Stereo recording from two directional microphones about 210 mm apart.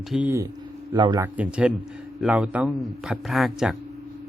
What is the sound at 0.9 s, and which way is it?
Speech, 20° right (ahead or behind).